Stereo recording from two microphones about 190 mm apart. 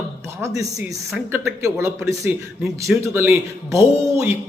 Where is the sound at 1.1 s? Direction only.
10° right (ahead or behind).